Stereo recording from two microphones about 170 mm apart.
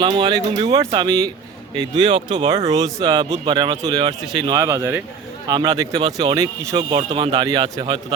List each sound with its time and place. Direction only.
0.0 s speech: 25° right (ahead or behind)
4.8 s a man's voice: 10° right (ahead or behind)
5.5 s speech: 25° right (ahead or behind)
6.7 s speech: 35° right (ahead or behind)